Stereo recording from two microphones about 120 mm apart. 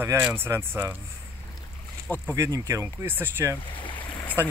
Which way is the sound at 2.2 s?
25° right (ahead or behind).